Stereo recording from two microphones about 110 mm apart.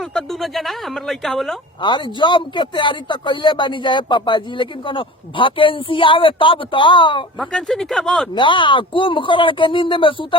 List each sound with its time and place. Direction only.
0.0 s speech: 5° left (ahead or behind)
1.8 s a man's voice: 45° left (ahead or behind)
7.3 s speech: 5° left (ahead or behind)
8.4 s a man's voice: 50° left (ahead or behind)